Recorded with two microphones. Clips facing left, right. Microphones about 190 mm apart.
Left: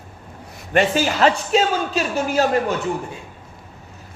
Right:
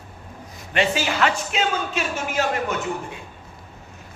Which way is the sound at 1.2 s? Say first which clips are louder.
Left 7 dB; 35° left (ahead or behind).